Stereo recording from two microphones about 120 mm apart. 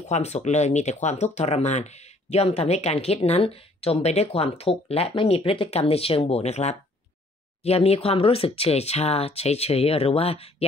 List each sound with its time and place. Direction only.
0.1 s speech: 70° left (ahead or behind)